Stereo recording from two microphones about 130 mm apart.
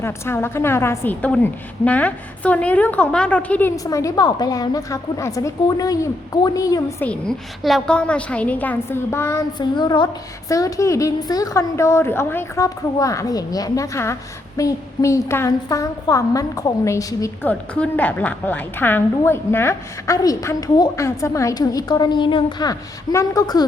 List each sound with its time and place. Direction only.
0.0 s a woman's voice: 20° left (ahead or behind)
3.8 s a woman's voice: 25° left (ahead or behind)
7.0 s a woman's voice: 5° left (ahead or behind)
9.6 s child singing: 35° left (ahead or behind)
10.5 s a woman's voice: 25° left (ahead or behind)
17.4 s a woman's voice: 10° left (ahead or behind); by 23.6 s 30° left (ahead or behind)